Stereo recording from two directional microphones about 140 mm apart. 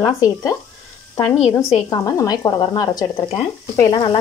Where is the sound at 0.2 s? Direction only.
25° left (ahead or behind).